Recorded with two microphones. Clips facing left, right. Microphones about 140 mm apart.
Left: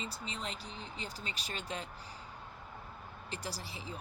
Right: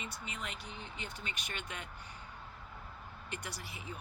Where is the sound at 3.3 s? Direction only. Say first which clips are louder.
Left 3 dB; 35° left (ahead or behind).